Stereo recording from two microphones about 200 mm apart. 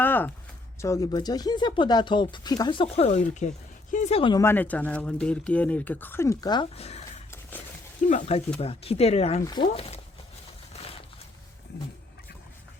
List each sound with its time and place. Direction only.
0.0 s a sound: 10° left (ahead or behind)
0.8 s speech: 15° left (ahead or behind)
8.0 s speech: 40° left (ahead or behind)